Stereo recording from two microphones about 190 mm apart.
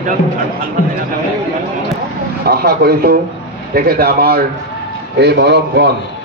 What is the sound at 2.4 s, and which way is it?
A man's voice, 55° right (ahead or behind).